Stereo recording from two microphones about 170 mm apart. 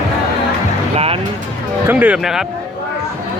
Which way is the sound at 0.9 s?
35° right (ahead or behind).